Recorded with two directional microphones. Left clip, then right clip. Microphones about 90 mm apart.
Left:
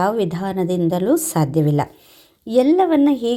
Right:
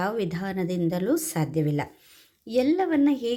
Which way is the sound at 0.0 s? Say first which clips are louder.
Left 9 dB; 25° left (ahead or behind).